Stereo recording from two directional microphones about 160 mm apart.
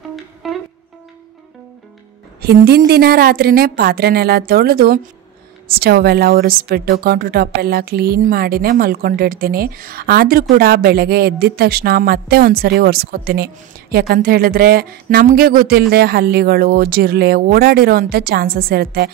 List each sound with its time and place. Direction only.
0.1 s music: centre (ahead or behind)
2.4 s speech: 75° right (ahead or behind)